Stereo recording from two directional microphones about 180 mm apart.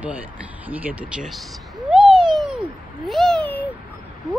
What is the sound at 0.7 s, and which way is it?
Speech, 5° right (ahead or behind).